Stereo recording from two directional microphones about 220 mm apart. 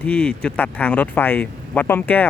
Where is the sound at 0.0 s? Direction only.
5° left (ahead or behind).